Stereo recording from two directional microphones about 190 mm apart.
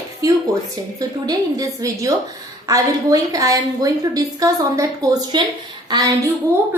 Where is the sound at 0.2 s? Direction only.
20° right (ahead or behind).